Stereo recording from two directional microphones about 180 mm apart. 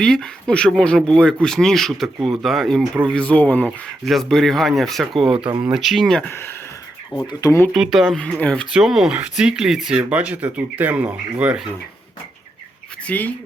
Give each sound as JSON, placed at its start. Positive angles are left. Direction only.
{"t": 0.0, "sound": "speech", "side_deg": 5}
{"t": 7.1, "sound": "speech", "side_deg": 20}
{"t": 7.7, "sound": "speech", "side_deg": 0}
{"t": 13.1, "sound": "speech", "side_deg": 10}